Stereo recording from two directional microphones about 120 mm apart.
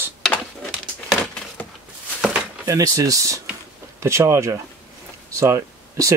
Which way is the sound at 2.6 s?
30° right (ahead or behind).